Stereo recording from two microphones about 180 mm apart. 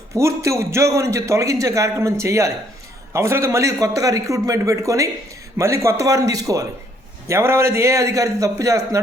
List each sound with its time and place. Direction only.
0.1 s a man's voice: 15° right (ahead or behind)